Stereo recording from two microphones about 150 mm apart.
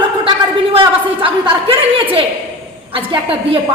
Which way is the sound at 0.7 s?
35° right (ahead or behind).